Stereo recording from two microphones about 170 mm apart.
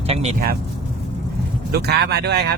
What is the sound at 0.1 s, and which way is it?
Speech, 40° right (ahead or behind).